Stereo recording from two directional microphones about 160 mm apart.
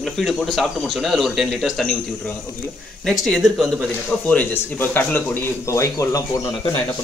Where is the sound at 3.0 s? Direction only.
Centre (ahead or behind).